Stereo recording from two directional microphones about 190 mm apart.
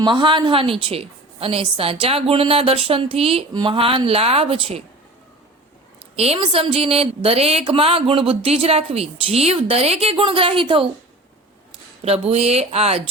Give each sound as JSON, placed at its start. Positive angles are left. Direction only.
{"t": 0.0, "sound": "a woman's voice", "side_deg": -25}
{"t": 6.1, "sound": "a woman's voice", "side_deg": -30}